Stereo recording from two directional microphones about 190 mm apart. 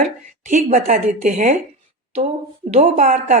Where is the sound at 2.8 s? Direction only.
40° right (ahead or behind).